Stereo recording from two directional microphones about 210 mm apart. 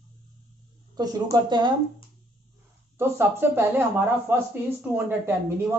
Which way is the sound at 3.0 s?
10° right (ahead or behind).